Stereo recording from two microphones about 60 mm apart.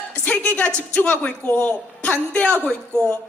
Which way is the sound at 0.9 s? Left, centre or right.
Left.